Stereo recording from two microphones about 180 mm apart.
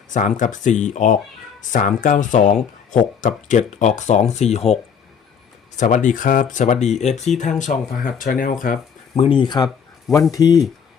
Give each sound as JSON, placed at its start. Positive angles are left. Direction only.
{"t": 0.1, "sound": "speech", "side_deg": 45}
{"t": 7.6, "sound": "speech", "side_deg": 50}
{"t": 9.1, "sound": "speech", "side_deg": 30}